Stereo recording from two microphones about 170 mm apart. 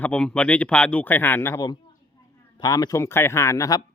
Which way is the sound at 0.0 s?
5° left (ahead or behind).